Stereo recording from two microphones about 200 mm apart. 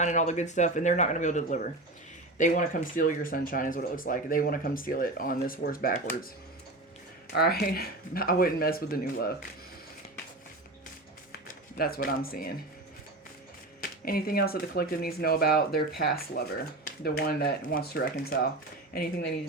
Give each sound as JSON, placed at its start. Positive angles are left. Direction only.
{"t": 0.0, "sound": "speech", "side_deg": 35}
{"t": 7.3, "sound": "speech", "side_deg": 50}
{"t": 11.3, "sound": "a sound", "side_deg": 50}
{"t": 13.8, "sound": "speech", "side_deg": 45}